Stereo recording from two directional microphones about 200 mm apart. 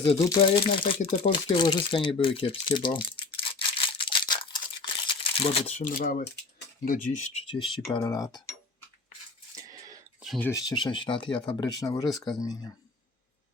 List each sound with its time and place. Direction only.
0.0 s speech: 25° left (ahead or behind)
9.6 s cough: 15° right (ahead or behind)
10.2 s speech: 5° left (ahead or behind)
10.5 s speech: 20° left (ahead or behind)